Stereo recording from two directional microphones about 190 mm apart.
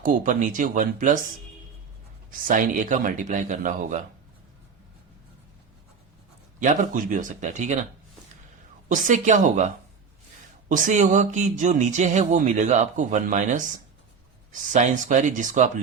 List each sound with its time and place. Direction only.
0.0 s speech: 45° right (ahead or behind)
2.3 s speech: 45° right (ahead or behind)
6.6 s speech: 40° right (ahead or behind)
8.9 s speech: 40° right (ahead or behind)